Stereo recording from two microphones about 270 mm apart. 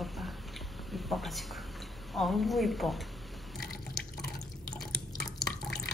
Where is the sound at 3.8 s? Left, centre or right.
Left.